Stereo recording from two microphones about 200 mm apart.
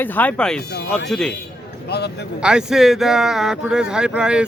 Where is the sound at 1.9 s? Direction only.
55° left (ahead or behind).